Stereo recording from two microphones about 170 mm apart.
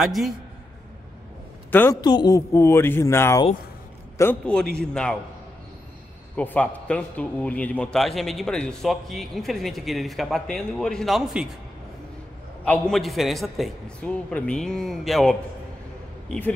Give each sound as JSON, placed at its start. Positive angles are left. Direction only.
{"t": 0.0, "sound": "a man's voice", "side_deg": 0}
{"t": 1.7, "sound": "a woman's voice", "side_deg": 10}
{"t": 2.0, "sound": "a man's voice", "side_deg": 25}
{"t": 6.3, "sound": "a man's voice", "side_deg": 10}
{"t": 12.6, "sound": "a man's voice", "side_deg": 5}